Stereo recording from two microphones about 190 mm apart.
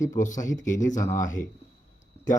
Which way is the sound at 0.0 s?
40° left (ahead or behind).